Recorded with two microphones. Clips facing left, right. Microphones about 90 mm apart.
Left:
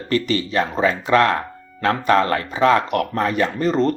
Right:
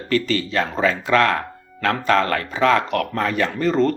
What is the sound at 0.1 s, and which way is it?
Speech, 15° left (ahead or behind).